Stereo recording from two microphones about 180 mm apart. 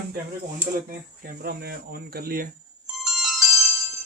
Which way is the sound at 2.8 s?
Centre (ahead or behind).